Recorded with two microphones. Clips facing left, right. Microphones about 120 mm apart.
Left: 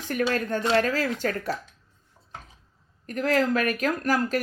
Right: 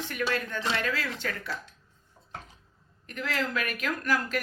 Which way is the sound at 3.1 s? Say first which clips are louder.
Left 8 dB; 45° left (ahead or behind).